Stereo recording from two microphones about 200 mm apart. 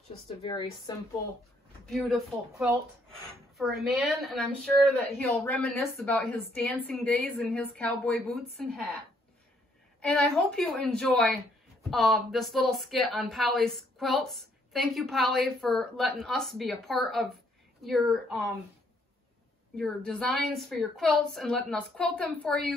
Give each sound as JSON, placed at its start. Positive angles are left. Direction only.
{"t": 0.4, "sound": "a woman's voice", "side_deg": 20}
{"t": 1.9, "sound": "speech", "side_deg": 0}
{"t": 3.8, "sound": "speech", "side_deg": 0}
{"t": 10.0, "sound": "speech", "side_deg": 0}
{"t": 19.8, "sound": "speech", "side_deg": 5}